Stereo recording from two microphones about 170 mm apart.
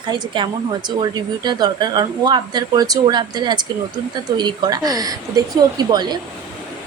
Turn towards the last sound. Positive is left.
turn(degrees=-25)  # may be behind; listen again after turning